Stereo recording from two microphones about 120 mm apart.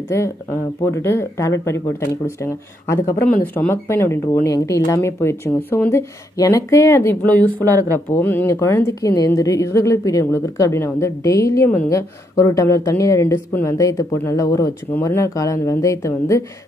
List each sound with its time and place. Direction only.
0.1 s speech: 20° left (ahead or behind)
7.2 s speech: 15° left (ahead or behind)